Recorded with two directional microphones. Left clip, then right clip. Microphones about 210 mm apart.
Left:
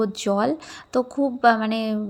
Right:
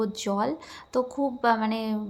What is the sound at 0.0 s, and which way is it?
A woman's voice, 20° left (ahead or behind).